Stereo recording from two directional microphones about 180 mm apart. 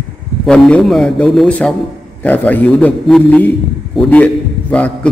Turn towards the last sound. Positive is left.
turn(degrees=10)  # may be behind; listen again after turning